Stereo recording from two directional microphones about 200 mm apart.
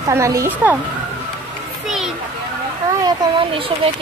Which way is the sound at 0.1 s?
15° right (ahead or behind).